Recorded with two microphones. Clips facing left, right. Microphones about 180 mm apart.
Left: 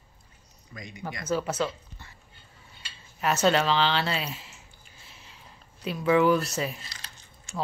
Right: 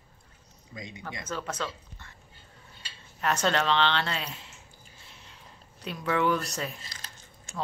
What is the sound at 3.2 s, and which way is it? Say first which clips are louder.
Speech: left 3 dB; 5° left (ahead or behind).